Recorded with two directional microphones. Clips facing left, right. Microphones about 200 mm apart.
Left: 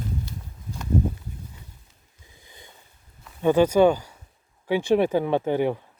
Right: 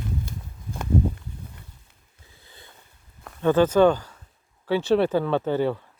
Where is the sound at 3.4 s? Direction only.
10° left (ahead or behind).